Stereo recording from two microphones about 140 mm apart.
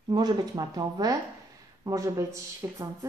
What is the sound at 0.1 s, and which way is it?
Speech, 30° right (ahead or behind).